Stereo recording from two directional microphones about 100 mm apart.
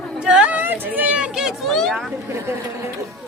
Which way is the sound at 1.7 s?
5° left (ahead or behind).